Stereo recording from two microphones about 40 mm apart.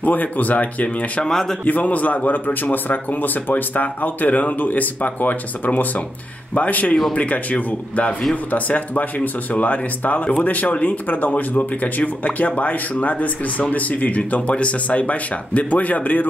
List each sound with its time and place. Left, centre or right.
0.0 s a man's voice: left
1.2 s speech: centre
1.6 s a man's voice: left